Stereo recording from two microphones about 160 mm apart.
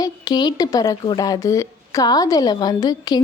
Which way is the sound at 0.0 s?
25° left (ahead or behind).